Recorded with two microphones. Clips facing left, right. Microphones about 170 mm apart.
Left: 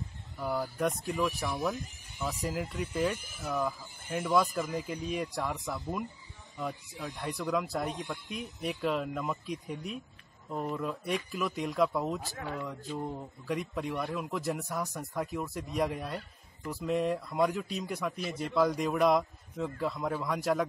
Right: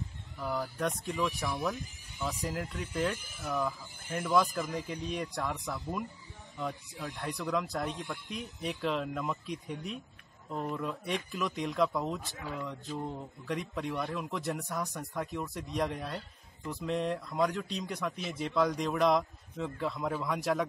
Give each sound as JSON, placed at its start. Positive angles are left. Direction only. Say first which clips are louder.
{"t": 0.4, "sound": "speech", "louder": "left 2 dB", "side_deg": 10}